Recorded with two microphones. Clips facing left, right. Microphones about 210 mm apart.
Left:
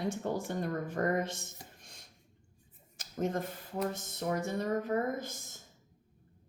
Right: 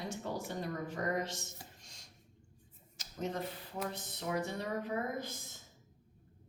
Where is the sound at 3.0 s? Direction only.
50° left (ahead or behind).